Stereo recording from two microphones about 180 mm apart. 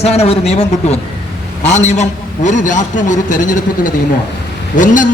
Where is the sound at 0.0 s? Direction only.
35° left (ahead or behind).